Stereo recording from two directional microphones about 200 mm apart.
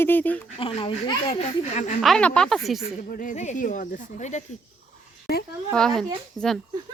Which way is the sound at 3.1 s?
40° left (ahead or behind).